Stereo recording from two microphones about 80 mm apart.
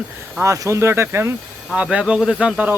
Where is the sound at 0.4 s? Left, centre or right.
Right.